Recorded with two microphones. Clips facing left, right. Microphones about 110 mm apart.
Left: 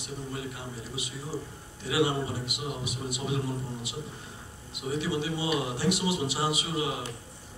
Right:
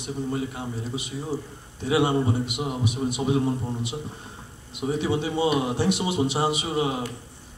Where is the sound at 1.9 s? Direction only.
25° right (ahead or behind).